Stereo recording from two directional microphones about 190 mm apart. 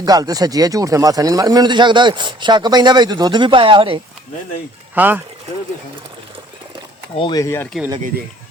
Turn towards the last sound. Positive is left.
turn(degrees=0)  # may be behind; listen again after turning